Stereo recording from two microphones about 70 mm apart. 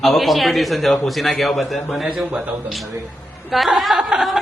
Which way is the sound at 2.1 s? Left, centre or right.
Centre.